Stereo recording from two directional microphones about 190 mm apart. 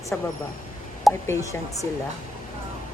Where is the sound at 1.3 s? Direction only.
15° left (ahead or behind).